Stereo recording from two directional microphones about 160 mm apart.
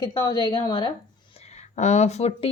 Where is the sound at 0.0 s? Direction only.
25° left (ahead or behind).